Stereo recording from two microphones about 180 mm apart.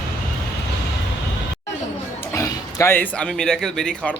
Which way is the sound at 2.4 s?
15° left (ahead or behind).